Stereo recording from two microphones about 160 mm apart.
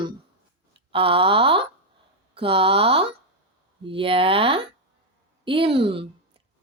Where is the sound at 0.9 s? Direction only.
35° right (ahead or behind).